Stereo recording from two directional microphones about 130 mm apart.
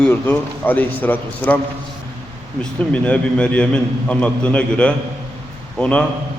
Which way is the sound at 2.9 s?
10° left (ahead or behind).